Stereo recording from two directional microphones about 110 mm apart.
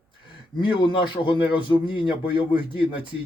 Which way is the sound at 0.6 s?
45° left (ahead or behind).